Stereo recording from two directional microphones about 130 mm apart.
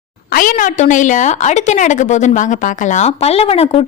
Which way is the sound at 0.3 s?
90° left.